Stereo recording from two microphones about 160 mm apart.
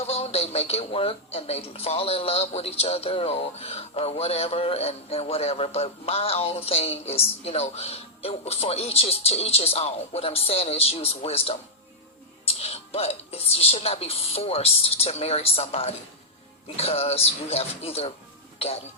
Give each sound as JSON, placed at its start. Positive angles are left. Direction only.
{"t": 0.0, "sound": "speech", "side_deg": 40}